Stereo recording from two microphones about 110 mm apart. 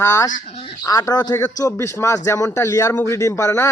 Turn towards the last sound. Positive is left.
turn(degrees=25)  # may be behind; listen again after turning